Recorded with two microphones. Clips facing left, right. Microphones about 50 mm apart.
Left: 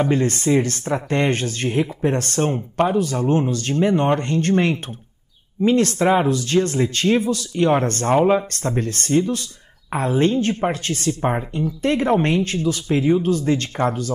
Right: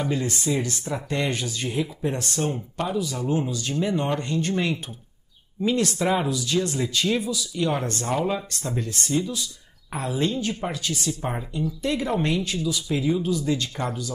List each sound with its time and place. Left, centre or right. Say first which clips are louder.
0.0 s speech: left 7 dB; left
8.5 s speech: left 6 dB; left